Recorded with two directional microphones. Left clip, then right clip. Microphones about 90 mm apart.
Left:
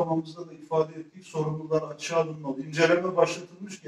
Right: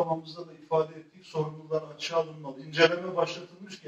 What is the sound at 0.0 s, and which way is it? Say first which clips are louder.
A man's voice: left 2 dB; 25° left (ahead or behind).